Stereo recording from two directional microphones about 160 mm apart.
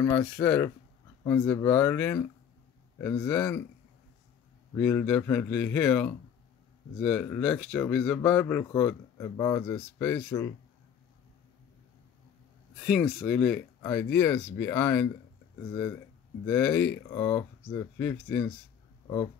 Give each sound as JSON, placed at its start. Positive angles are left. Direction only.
{"t": 0.0, "sound": "speech", "side_deg": 15}
{"t": 4.7, "sound": "speech", "side_deg": 10}
{"t": 12.8, "sound": "speech", "side_deg": 5}
{"t": 16.4, "sound": "speech", "side_deg": 10}